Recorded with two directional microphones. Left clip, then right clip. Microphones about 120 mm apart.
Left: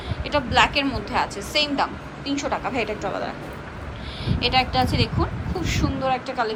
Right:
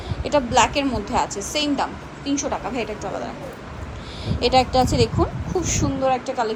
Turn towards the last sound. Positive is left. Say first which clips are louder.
# right 2 dB
turn(degrees=-30)  # may be behind; listen again after turning